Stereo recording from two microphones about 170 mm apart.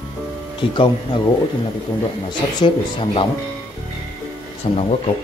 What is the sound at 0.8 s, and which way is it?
Speech, 30° left (ahead or behind).